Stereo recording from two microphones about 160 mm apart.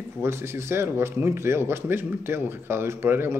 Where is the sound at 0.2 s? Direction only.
15° right (ahead or behind).